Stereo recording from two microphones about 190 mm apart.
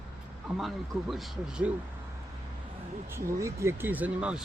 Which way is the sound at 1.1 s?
Centre (ahead or behind).